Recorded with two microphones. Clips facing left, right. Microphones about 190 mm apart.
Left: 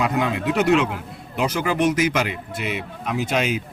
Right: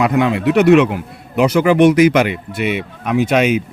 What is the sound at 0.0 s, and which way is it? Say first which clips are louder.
Speech: right 7 dB; 70° right (ahead or behind).